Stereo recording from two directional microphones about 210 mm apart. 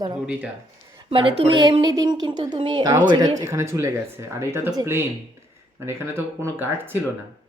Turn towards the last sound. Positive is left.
turn(degrees=-10)  # may be behind; listen again after turning